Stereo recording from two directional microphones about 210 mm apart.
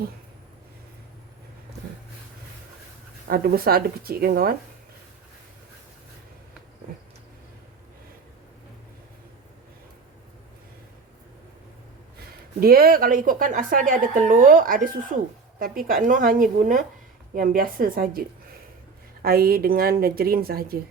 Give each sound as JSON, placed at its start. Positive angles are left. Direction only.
{"t": 3.2, "sound": "a woman's voice", "side_deg": -45}
{"t": 12.5, "sound": "a woman's voice", "side_deg": -45}